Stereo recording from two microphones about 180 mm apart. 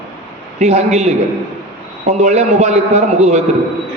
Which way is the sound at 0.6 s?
40° right (ahead or behind).